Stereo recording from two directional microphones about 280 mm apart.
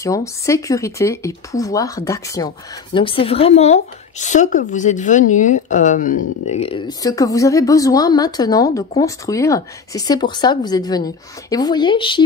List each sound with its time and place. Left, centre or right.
0.0 s speech: centre